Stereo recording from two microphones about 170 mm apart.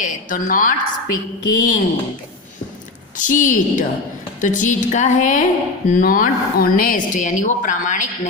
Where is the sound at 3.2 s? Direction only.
50° left (ahead or behind).